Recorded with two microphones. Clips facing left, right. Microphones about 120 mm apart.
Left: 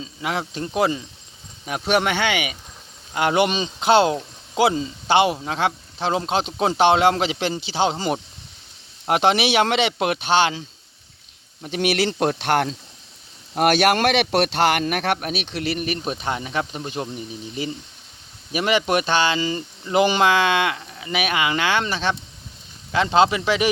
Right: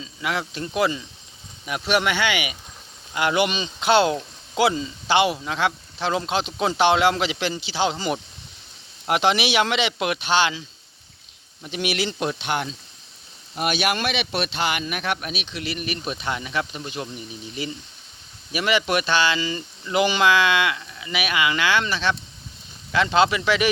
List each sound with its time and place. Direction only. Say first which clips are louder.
0.0 s speech: left 1 dB; 35° left (ahead or behind)
2.0 s speech: left 1 dB; 45° left (ahead or behind)
11.6 s speech: left 5 dB; 45° left (ahead or behind)
12.4 s speech: left 6 dB; 70° left (ahead or behind)
15.7 s speech: left 2 dB; 35° left (ahead or behind)
19.0 s speech: left 2 dB; 45° left (ahead or behind)
20.5 s speech: left 1 dB; 30° left (ahead or behind)
22.9 s a man's voice: left 2 dB; 30° left (ahead or behind)